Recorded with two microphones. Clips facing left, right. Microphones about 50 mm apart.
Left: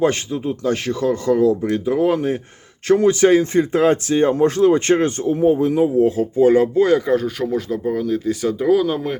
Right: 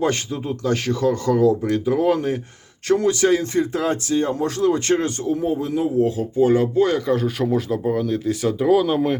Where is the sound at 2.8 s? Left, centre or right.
Left.